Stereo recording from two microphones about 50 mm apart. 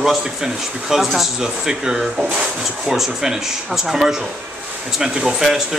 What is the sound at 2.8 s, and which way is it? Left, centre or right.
Speech, centre.